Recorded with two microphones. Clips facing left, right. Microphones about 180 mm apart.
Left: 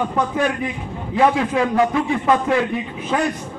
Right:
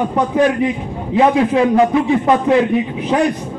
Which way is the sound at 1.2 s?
20° right (ahead or behind).